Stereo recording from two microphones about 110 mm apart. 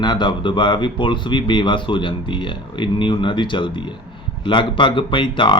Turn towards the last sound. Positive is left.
turn(degrees=50)  # may be behind; listen again after turning